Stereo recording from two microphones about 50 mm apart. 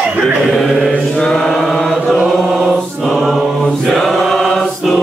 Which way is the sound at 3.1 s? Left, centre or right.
Centre.